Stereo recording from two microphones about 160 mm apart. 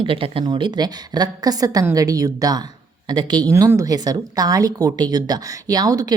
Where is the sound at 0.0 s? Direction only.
35° right (ahead or behind).